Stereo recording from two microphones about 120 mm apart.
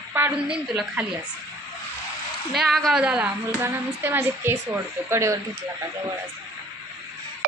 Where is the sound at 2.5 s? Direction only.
Centre (ahead or behind); by 5.4 s 25° right (ahead or behind).